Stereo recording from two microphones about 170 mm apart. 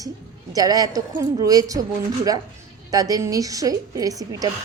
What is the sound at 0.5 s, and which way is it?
A woman's voice, 20° right (ahead or behind).